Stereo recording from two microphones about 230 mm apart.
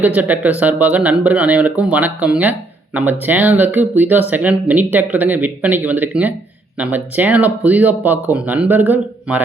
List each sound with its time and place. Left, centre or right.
0.0 s speech: centre